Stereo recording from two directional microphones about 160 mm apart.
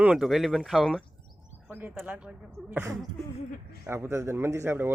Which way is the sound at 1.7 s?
10° right (ahead or behind).